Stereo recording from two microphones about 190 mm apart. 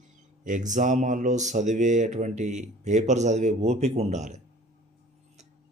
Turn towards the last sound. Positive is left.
turn(degrees=-40)  # may be behind; listen again after turning